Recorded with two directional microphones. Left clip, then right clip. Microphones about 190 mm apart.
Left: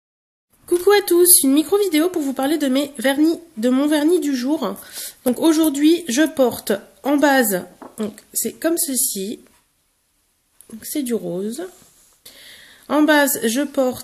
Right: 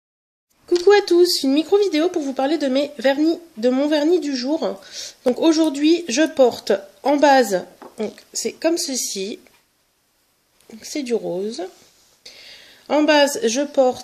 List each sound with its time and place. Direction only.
0.7 s speech: 5° right (ahead or behind)
8.7 s speech: 15° left (ahead or behind)
9.1 s speech: 5° right (ahead or behind)
11.2 s speech: 5° right (ahead or behind)
12.4 s a sound: 10° right (ahead or behind)
13.4 s speech: 5° right (ahead or behind)